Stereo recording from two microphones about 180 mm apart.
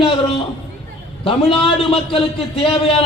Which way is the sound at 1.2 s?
30° left (ahead or behind).